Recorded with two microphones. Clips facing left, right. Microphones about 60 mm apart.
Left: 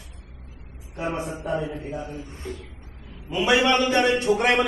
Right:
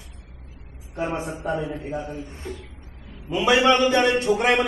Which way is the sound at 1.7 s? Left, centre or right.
Right.